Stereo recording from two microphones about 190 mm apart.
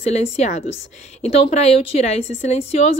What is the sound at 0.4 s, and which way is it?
A woman's voice, 40° left (ahead or behind).